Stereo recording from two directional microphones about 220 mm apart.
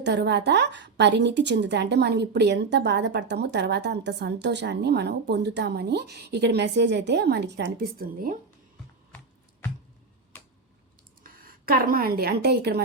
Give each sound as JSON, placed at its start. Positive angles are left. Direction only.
{"t": 0.0, "sound": "a woman's voice", "side_deg": -50}
{"t": 11.2, "sound": "a woman's voice", "side_deg": -40}